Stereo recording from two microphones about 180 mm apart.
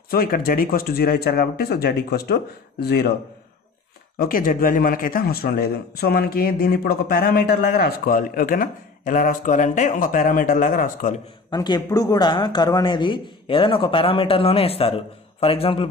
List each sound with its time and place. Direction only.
0.1 s speech: 55° left (ahead or behind)
4.2 s speech: 50° left (ahead or behind)
11.5 s a man's voice: 25° left (ahead or behind)